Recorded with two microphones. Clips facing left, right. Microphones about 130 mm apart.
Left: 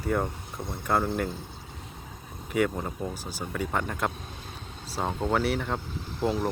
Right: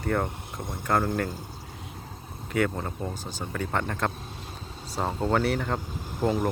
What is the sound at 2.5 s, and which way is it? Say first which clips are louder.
Speech: even; 10° left (ahead or behind).